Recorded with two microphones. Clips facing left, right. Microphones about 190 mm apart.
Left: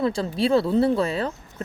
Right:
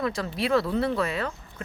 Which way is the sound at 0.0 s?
30° left (ahead or behind).